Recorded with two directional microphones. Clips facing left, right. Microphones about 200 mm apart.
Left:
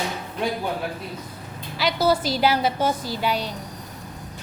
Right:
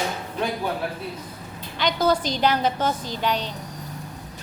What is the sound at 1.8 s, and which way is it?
A woman's voice, 5° left (ahead or behind).